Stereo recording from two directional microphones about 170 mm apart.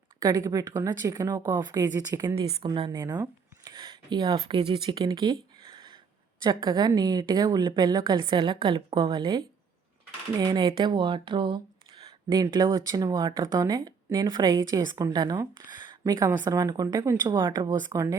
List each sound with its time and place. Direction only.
0.2 s speech: 20° right (ahead or behind)
5.7 s a sound: 30° right (ahead or behind)
6.4 s speech: 25° right (ahead or behind)